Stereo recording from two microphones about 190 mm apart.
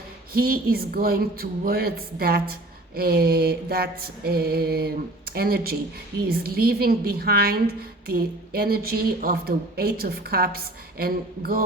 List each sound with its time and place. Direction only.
0.3 s a woman's voice: 50° right (ahead or behind)